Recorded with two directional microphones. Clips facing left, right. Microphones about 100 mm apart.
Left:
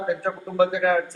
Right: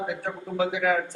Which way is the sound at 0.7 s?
40° left (ahead or behind).